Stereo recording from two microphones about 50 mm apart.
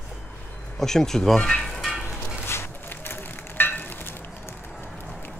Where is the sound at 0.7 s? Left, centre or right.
Centre.